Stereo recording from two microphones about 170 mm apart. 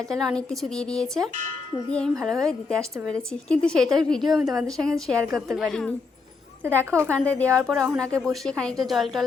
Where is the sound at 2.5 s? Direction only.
5° left (ahead or behind).